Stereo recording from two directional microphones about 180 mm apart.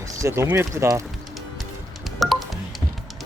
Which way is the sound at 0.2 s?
15° right (ahead or behind).